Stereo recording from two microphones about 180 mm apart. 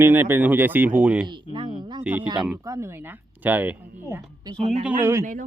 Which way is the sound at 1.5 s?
25° right (ahead or behind).